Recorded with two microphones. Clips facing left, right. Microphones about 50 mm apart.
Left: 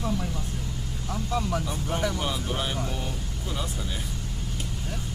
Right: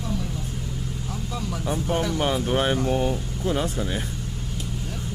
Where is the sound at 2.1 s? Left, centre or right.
Right.